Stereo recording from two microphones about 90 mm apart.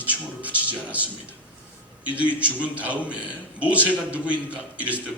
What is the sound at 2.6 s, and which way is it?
A man's voice, 15° right (ahead or behind).